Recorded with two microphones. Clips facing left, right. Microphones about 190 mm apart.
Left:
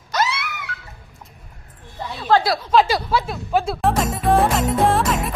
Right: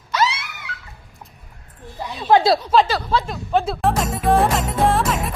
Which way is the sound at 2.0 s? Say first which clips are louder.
Right 3 dB; 20° right (ahead or behind).